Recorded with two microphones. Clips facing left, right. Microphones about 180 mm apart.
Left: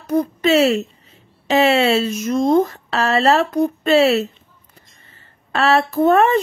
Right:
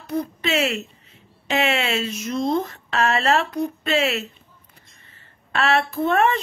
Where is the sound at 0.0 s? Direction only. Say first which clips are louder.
Left 8 dB; 45° left (ahead or behind).